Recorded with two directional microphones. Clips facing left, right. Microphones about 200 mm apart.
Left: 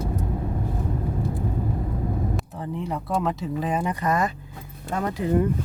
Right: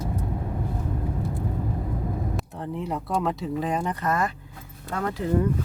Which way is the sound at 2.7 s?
Centre (ahead or behind).